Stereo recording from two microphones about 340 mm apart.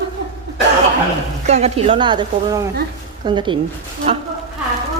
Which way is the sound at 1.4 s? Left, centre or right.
Centre.